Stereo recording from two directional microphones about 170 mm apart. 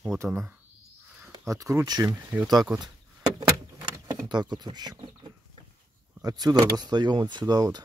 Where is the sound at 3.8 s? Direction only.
25° right (ahead or behind).